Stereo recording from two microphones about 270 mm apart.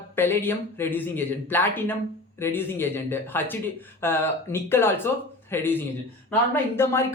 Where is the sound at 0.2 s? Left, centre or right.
Centre.